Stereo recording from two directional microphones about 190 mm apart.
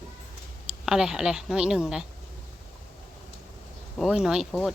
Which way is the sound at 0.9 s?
5° right (ahead or behind).